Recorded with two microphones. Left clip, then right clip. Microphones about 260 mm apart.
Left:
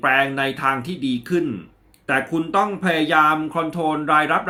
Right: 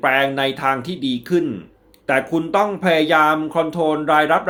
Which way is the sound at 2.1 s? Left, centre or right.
Centre.